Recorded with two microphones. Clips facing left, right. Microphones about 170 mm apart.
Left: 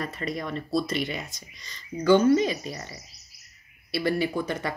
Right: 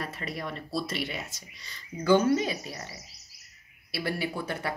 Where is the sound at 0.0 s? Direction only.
5° right (ahead or behind).